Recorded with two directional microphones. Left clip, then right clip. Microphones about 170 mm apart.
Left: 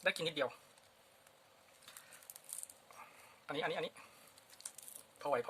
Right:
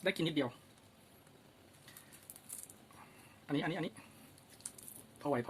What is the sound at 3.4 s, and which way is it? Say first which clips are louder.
Speech: right 1 dB; 30° left (ahead or behind).